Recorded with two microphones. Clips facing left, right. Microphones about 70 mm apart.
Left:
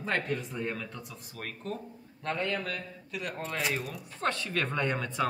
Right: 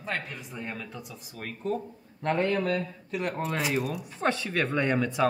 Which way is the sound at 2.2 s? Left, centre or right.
Right.